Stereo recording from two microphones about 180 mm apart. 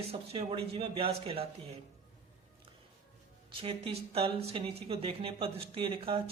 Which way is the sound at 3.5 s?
30° right (ahead or behind).